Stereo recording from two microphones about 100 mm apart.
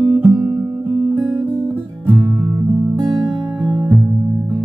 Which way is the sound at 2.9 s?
30° right (ahead or behind).